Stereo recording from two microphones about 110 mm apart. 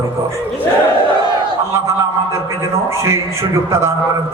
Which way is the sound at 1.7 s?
25° right (ahead or behind).